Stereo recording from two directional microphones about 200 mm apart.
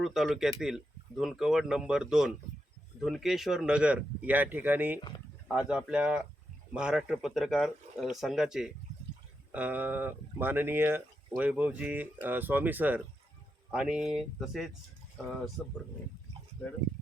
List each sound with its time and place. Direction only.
0.0 s speech: centre (ahead or behind)